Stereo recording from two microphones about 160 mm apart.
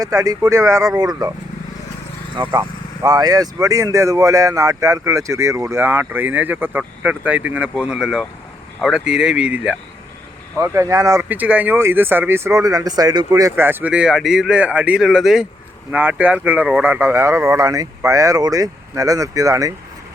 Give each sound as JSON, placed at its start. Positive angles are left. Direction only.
{"t": 0.0, "sound": "speech", "side_deg": -20}
{"t": 2.3, "sound": "speech", "side_deg": -30}
{"t": 10.6, "sound": "speech", "side_deg": -20}